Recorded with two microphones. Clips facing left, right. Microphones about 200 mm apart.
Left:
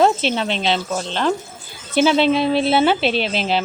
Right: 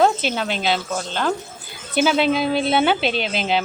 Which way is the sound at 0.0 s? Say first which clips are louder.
Left 2 dB; 5° right (ahead or behind).